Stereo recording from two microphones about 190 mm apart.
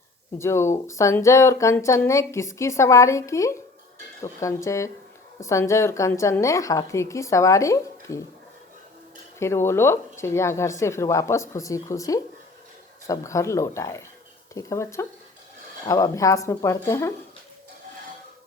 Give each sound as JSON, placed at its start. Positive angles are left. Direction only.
{"t": 0.3, "sound": "a woman's voice", "side_deg": 15}
{"t": 9.4, "sound": "a woman's voice", "side_deg": 15}